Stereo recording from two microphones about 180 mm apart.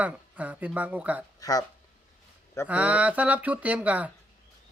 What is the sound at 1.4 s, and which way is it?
Speech, 20° left (ahead or behind).